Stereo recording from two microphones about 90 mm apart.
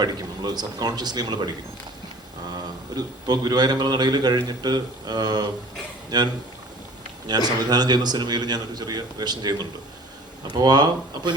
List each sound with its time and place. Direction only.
0.0 s a man's voice: 50° right (ahead or behind)
2.6 s a man's voice: 50° right (ahead or behind)